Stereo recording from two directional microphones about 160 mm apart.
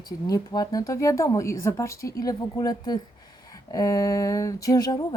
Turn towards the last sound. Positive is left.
turn(degrees=25)  # may be behind; listen again after turning